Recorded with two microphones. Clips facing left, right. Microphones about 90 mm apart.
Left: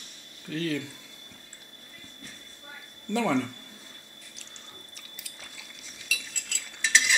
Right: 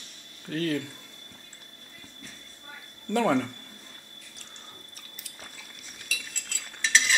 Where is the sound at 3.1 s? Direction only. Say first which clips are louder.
Right 2 dB; 50° right (ahead or behind).